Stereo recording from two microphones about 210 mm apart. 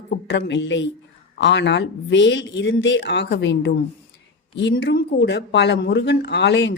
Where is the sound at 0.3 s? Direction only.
60° left (ahead or behind).